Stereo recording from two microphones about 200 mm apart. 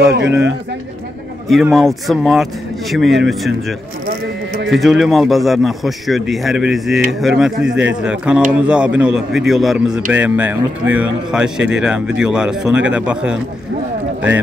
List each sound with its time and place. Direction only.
0.1 s speech: 60° right (ahead or behind)
1.5 s a man's voice: centre (ahead or behind)